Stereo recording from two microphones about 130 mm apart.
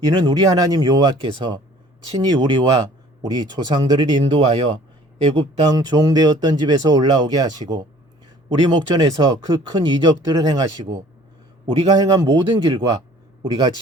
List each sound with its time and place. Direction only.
0.0 s speech: 30° right (ahead or behind)
4.2 s speech: 45° right (ahead or behind)
5.7 s speech: 30° right (ahead or behind)